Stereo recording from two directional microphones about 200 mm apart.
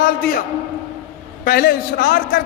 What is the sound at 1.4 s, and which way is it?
A man's voice, 50° left (ahead or behind).